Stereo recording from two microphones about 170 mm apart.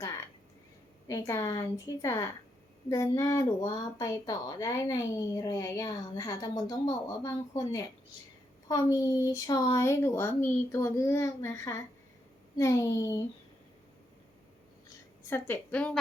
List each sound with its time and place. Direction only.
1.0 s a woman's voice: 20° left (ahead or behind)
15.3 s a woman's voice: 10° left (ahead or behind)